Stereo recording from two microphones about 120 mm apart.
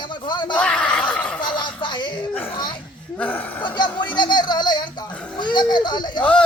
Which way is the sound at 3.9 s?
40° left (ahead or behind).